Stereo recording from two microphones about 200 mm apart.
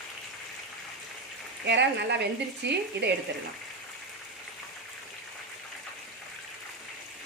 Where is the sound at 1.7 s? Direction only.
60° right (ahead or behind).